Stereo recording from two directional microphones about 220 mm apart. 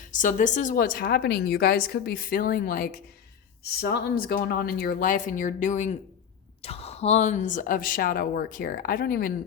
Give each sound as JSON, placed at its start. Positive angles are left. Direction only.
{"t": 0.1, "sound": "speech", "side_deg": 35}